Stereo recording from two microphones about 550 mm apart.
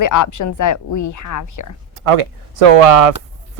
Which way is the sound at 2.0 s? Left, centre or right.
Right.